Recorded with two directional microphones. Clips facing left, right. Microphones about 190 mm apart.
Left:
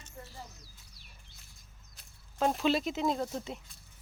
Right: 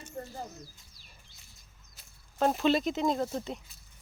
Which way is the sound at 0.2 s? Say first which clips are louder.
Right 8 dB; 50° right (ahead or behind).